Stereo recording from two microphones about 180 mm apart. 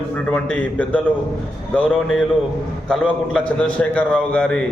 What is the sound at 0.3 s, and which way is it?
A man's voice, 10° left (ahead or behind).